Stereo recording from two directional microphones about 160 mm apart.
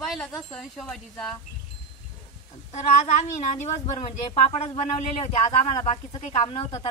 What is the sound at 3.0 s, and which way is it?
A woman's voice, 45° left (ahead or behind).